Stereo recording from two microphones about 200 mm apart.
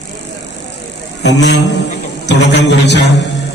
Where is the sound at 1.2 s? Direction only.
60° left (ahead or behind).